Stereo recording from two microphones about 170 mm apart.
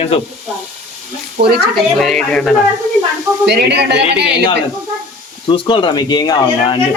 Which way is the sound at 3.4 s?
80° right.